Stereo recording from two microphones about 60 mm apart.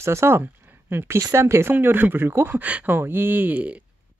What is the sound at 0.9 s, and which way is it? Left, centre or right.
Speech, right.